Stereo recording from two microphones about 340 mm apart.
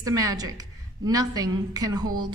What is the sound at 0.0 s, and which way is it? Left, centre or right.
A woman's voice, centre.